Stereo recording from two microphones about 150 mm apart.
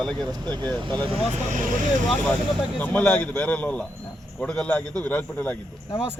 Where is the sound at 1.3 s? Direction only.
55° right (ahead or behind).